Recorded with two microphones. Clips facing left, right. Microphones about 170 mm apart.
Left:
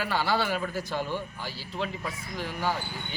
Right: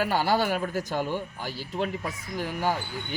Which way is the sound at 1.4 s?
50° right (ahead or behind).